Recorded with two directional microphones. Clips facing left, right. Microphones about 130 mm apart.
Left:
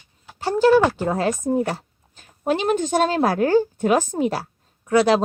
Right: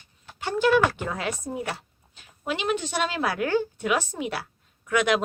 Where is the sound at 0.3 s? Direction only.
35° left (ahead or behind).